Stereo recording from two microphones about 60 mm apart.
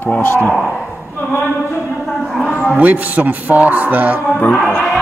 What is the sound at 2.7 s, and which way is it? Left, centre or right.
Speech, right.